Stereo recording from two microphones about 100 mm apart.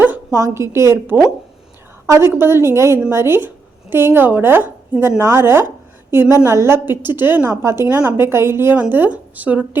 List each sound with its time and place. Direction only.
0.3 s speech: 25° right (ahead or behind)